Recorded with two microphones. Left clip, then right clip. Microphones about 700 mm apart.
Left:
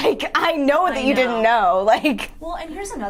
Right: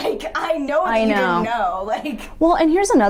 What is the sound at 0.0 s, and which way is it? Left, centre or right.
A woman's voice, left.